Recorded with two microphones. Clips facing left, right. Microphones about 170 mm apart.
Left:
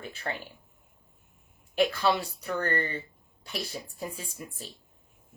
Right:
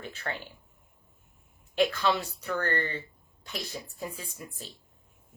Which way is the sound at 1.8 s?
10° left (ahead or behind).